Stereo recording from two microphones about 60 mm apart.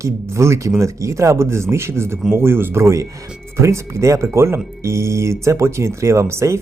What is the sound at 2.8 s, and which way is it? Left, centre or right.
Speech, right.